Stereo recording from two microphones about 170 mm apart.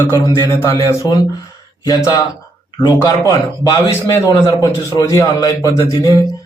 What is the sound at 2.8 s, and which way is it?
A man's voice, 20° left (ahead or behind).